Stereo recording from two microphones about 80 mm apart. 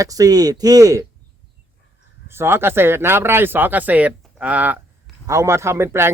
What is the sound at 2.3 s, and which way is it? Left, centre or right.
Speech, right.